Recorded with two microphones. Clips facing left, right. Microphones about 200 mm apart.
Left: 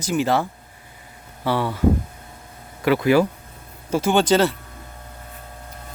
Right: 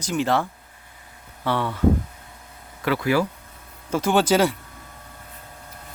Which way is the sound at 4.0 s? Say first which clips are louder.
Left 1 dB; centre (ahead or behind).